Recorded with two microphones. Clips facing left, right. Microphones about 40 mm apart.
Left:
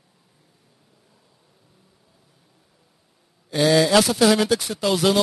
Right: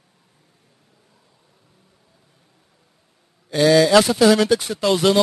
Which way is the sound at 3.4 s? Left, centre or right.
Centre.